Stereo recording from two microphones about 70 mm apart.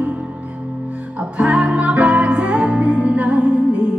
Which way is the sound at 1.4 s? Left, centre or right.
Centre.